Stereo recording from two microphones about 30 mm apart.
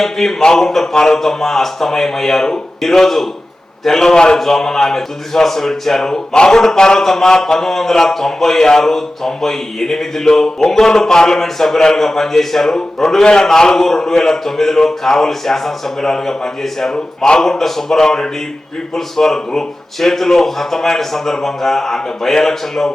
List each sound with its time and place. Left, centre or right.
0.0 s speech: centre
4.1 s speech: left
4.4 s speech: centre
6.3 s speech: left; by 22.9 s centre